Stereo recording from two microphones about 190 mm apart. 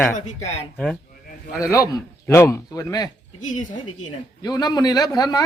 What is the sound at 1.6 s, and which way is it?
Speech, 15° left (ahead or behind).